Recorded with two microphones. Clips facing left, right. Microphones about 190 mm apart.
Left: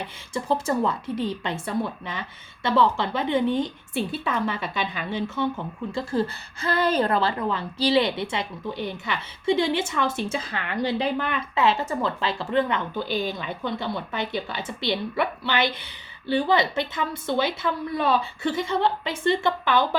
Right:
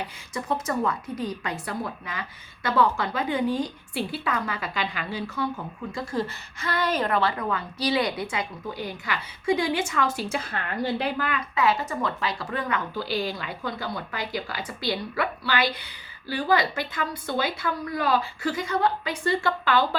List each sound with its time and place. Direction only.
0.3 s speech: 30° left (ahead or behind)